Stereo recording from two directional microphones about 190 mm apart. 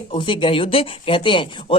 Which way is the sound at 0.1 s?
25° left (ahead or behind).